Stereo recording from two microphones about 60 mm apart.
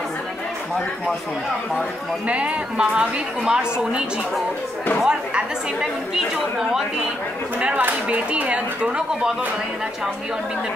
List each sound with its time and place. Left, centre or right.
2.2 s a woman's voice: centre
5.0 s a woman's voice: centre
7.8 s speech: right